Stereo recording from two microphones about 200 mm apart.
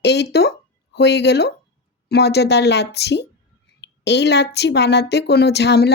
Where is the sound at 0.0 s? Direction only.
55° left (ahead or behind).